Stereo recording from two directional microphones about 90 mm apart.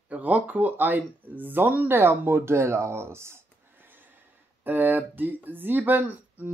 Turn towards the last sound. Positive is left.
turn(degrees=-20)  # may be behind; listen again after turning